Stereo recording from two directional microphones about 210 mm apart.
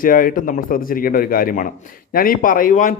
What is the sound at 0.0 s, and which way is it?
A man's voice, 40° left (ahead or behind).